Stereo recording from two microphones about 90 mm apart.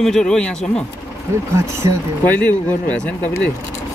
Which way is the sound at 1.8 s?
40° right (ahead or behind).